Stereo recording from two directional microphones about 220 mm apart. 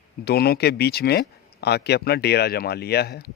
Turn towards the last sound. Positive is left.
turn(degrees=45)  # may be behind; listen again after turning